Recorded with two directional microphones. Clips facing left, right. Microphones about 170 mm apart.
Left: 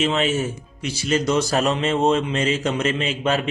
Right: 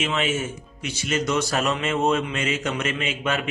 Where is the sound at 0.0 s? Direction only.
35° left (ahead or behind).